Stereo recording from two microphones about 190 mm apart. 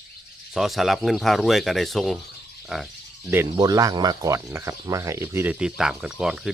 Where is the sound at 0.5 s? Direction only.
Centre (ahead or behind).